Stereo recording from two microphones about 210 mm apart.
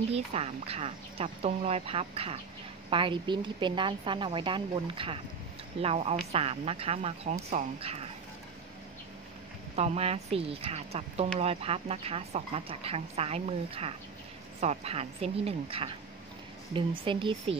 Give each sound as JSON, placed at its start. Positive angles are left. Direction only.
{"t": 0.1, "sound": "speech", "side_deg": -30}
{"t": 9.8, "sound": "speech", "side_deg": -30}